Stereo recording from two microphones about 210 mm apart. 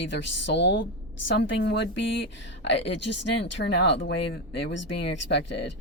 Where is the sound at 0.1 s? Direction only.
55° left (ahead or behind).